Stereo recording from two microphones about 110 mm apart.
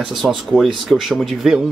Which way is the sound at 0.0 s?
Centre (ahead or behind).